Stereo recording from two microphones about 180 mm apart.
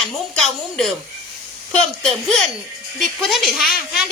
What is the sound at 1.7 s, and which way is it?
Speech, 5° left (ahead or behind).